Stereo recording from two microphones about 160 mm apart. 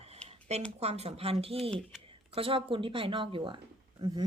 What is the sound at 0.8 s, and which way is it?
Speech, 40° right (ahead or behind).